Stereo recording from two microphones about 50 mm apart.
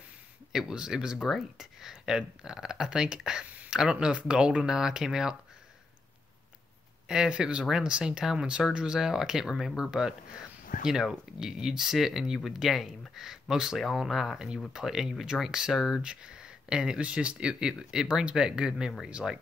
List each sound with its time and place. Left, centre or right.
0.5 s speech: centre
1.2 s speech: centre
1.8 s speech: centre
7.1 s speech: centre
16.0 s speech: centre